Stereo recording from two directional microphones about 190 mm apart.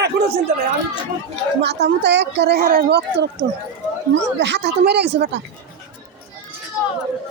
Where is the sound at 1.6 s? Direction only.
60° right (ahead or behind).